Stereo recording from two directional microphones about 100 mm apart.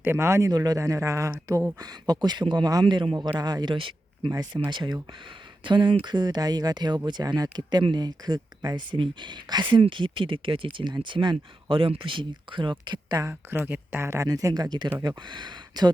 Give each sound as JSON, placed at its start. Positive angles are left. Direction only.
{"t": 0.0, "sound": "speech", "side_deg": -25}
{"t": 0.5, "sound": "speech", "side_deg": -40}
{"t": 2.8, "sound": "speech", "side_deg": -55}
{"t": 4.7, "sound": "speech", "side_deg": -50}
{"t": 10.8, "sound": "speech", "side_deg": -50}
{"t": 13.2, "sound": "speech", "side_deg": -20}